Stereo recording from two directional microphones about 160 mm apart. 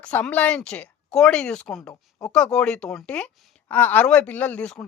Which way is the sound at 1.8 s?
20° left (ahead or behind).